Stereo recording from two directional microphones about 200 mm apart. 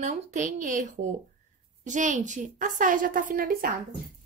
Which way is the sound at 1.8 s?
40° right (ahead or behind).